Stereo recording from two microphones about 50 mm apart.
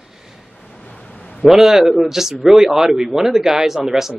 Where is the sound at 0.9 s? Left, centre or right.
Centre.